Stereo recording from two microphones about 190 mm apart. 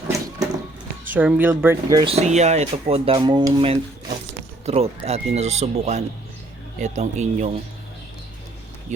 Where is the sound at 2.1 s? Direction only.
35° right (ahead or behind).